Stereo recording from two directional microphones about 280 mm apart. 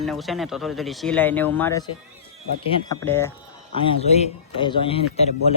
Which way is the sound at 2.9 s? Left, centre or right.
Centre.